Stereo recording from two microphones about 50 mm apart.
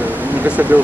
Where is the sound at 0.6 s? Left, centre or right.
Right.